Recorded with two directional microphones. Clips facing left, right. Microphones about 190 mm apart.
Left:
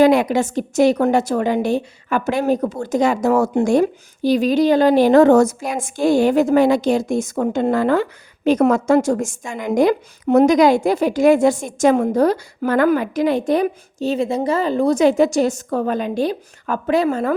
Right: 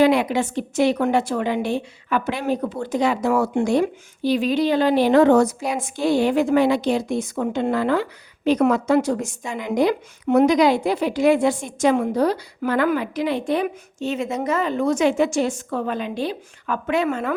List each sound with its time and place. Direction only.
0.0 s a woman's voice: 45° left (ahead or behind)